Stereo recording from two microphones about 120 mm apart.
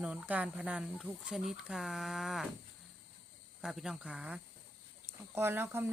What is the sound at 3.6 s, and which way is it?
Speech, 5° right (ahead or behind).